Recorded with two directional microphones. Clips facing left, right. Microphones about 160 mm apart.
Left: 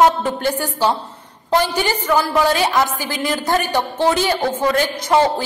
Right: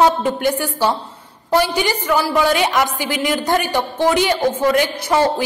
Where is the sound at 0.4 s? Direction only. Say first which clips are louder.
Right 1 dB; 10° right (ahead or behind).